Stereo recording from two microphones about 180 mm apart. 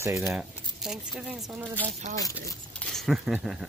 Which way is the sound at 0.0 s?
15° right (ahead or behind).